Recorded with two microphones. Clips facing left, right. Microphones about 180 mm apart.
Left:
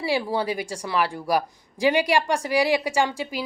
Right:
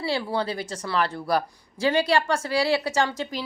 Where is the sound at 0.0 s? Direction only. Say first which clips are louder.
Left 2 dB; 15° left (ahead or behind).